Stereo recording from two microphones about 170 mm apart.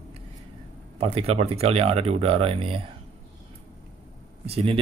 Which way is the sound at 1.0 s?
35° right (ahead or behind).